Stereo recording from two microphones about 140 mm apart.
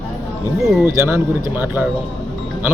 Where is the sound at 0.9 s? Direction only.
15° right (ahead or behind).